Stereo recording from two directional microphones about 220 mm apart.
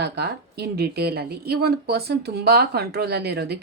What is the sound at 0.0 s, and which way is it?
Speech, 45° right (ahead or behind).